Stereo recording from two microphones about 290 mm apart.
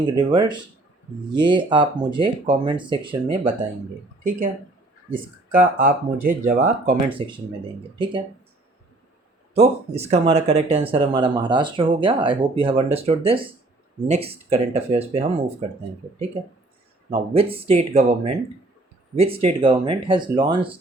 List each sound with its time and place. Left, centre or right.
0.0 s speech: centre
4.2 s speech: right
5.5 s speech: right
7.2 s speech: centre
9.6 s speech: right
17.1 s speech: centre